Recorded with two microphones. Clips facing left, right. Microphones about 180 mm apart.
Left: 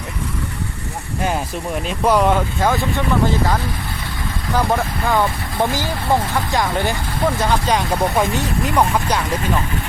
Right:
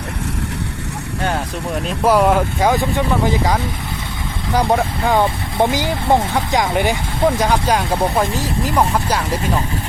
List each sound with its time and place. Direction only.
1.9 s speech: 5° right (ahead or behind)
4.5 s speech: 15° right (ahead or behind)